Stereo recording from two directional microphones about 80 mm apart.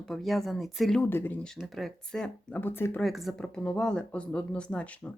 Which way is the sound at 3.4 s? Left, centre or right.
Centre.